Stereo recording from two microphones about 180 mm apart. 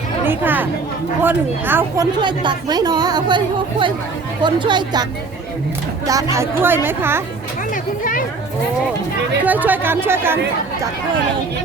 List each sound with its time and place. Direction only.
0.3 s speech: 10° right (ahead or behind)
2.2 s speech: 25° right (ahead or behind)
6.3 s speech: 15° right (ahead or behind)
9.4 s speech: 10° right (ahead or behind)